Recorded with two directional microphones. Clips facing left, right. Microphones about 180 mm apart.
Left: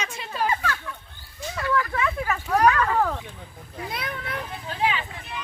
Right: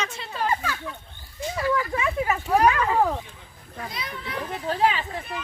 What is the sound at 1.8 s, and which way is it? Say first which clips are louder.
A woman's voice: right 1 dB; 20° right (ahead or behind).